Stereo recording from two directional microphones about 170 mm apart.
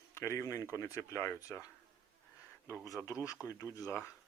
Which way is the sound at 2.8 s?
5° right (ahead or behind).